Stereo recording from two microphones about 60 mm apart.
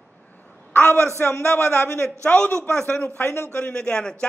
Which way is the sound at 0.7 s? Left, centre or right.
Left.